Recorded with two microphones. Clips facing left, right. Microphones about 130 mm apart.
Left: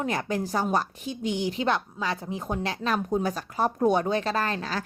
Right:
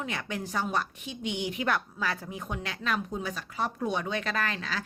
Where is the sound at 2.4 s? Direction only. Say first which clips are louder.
Left 6 dB; 35° left (ahead or behind).